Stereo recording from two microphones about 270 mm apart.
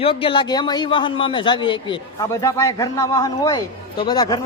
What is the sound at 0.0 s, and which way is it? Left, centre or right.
A man's voice, centre.